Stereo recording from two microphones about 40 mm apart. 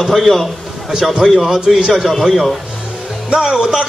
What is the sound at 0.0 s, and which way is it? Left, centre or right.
A man's voice, centre.